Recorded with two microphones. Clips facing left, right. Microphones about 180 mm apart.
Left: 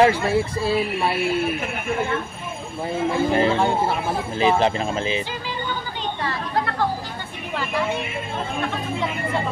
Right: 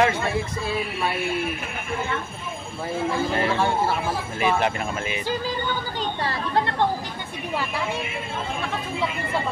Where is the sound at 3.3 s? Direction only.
20° left (ahead or behind).